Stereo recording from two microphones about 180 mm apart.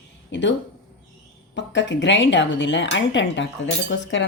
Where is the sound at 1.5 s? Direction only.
85° left.